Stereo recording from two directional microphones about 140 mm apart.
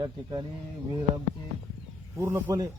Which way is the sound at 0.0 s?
25° right (ahead or behind).